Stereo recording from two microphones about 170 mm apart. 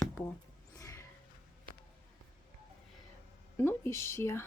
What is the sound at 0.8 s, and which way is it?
Music, 20° left (ahead or behind).